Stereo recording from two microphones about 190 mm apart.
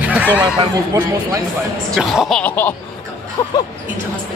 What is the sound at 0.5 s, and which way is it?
Speech, 20° right (ahead or behind).